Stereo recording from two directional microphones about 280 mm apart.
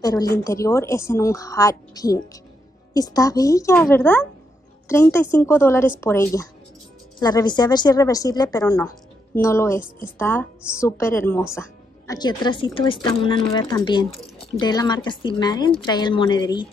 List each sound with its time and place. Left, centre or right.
0.0 s a woman's voice: centre